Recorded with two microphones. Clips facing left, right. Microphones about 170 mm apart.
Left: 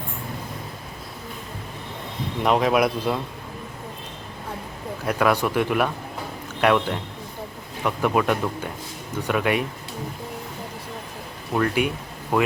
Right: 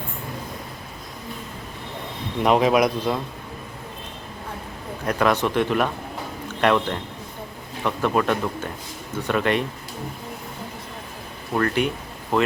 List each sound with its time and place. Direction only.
2.4 s speech: centre (ahead or behind)
5.0 s a man's voice: 10° left (ahead or behind)
11.5 s a man's voice: 10° left (ahead or behind)